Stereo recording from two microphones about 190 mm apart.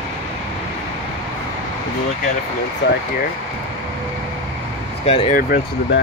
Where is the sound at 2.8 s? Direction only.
65° left (ahead or behind).